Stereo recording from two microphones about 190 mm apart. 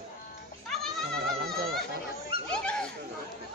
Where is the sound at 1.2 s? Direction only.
50° right (ahead or behind).